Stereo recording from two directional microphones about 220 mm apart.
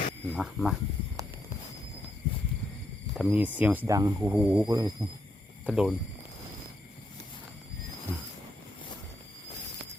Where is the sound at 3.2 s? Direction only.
5° right (ahead or behind).